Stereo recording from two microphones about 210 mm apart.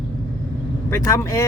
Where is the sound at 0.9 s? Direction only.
15° left (ahead or behind).